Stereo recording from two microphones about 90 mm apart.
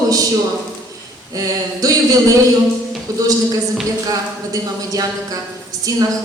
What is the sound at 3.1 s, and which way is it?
A woman's voice, 40° right (ahead or behind).